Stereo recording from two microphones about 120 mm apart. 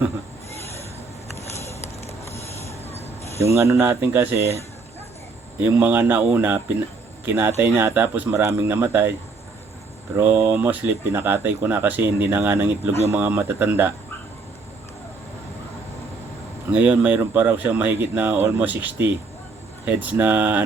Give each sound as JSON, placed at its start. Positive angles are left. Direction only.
{"t": 1.4, "sound": "a sound", "side_deg": 65}
{"t": 3.4, "sound": "speech", "side_deg": -25}
{"t": 5.5, "sound": "speech", "side_deg": -15}
{"t": 10.2, "sound": "speech", "side_deg": -15}
{"t": 16.7, "sound": "speech", "side_deg": -10}